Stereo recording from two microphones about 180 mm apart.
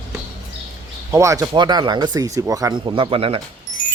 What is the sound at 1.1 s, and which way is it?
Speech, 15° right (ahead or behind).